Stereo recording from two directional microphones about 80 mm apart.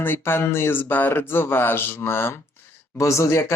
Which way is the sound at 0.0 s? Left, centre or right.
Left.